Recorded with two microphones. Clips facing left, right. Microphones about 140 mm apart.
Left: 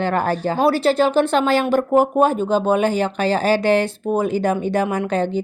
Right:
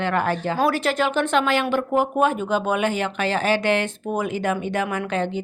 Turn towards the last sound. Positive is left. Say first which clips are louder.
# left 4 dB
turn(degrees=35)  # may be behind; listen again after turning